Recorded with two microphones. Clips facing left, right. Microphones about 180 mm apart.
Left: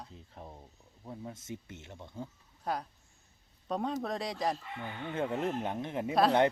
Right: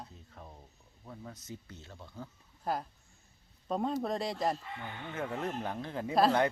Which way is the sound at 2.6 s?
Centre (ahead or behind).